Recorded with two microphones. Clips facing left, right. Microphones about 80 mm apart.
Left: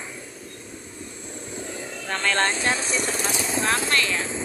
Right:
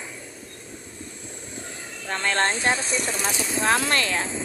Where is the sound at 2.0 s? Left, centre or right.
Centre.